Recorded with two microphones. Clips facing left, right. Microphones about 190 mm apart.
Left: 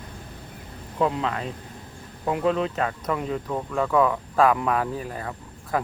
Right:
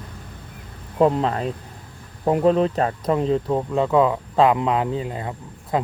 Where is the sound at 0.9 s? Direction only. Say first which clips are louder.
Right 6 dB; 40° right (ahead or behind).